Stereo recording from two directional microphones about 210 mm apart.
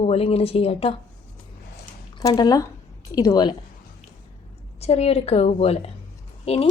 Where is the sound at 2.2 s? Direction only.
20° left (ahead or behind).